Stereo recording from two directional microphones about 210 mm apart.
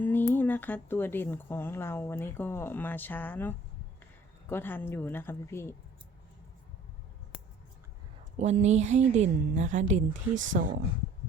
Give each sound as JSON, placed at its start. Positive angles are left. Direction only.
{"t": 0.0, "sound": "a sound", "side_deg": 10}
{"t": 0.3, "sound": "speech", "side_deg": 10}
{"t": 8.4, "sound": "a woman's voice", "side_deg": -35}